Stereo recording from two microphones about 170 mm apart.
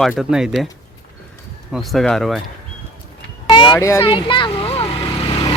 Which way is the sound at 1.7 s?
Centre (ahead or behind).